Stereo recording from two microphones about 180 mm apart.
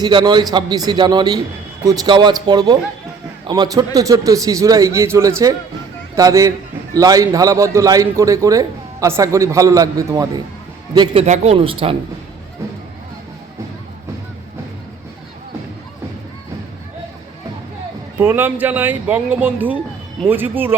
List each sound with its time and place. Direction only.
0.0 s a man's voice: 25° right (ahead or behind)
18.2 s speech: 10° right (ahead or behind)